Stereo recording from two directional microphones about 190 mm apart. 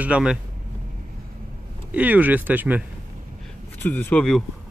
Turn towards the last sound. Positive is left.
turn(degrees=5)  # may be behind; listen again after turning